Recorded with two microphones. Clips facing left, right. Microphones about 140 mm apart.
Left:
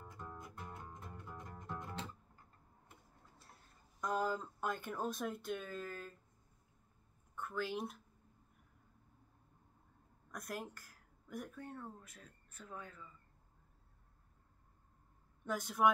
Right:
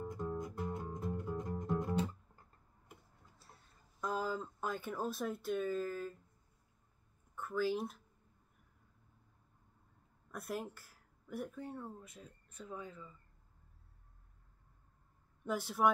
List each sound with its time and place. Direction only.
0.0 s music: 20° right (ahead or behind)
4.0 s speech: 5° right (ahead or behind)
7.3 s speech: 5° right (ahead or behind)
10.3 s speech: 5° right (ahead or behind)
15.4 s speech: 5° right (ahead or behind)